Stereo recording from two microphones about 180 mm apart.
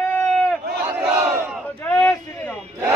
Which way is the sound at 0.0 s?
10° left (ahead or behind).